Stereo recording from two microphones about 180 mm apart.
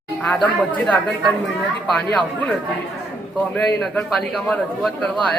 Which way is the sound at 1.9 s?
5° left (ahead or behind).